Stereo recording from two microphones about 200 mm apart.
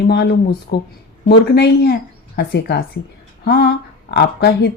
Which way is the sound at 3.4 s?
55° left (ahead or behind).